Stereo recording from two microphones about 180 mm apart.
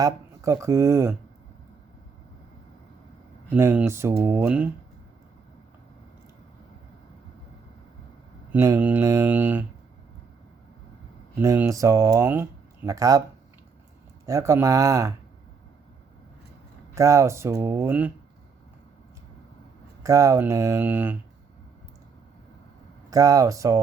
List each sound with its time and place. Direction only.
0.0 s speech: 20° right (ahead or behind)
3.5 s speech: 10° right (ahead or behind)
8.5 s speech: 15° right (ahead or behind)
11.3 s speech: 10° right (ahead or behind)
14.3 s speech: 15° right (ahead or behind)
16.9 s speech: 15° right (ahead or behind)
20.0 s speech: 20° right (ahead or behind)
23.0 s speech: 20° right (ahead or behind)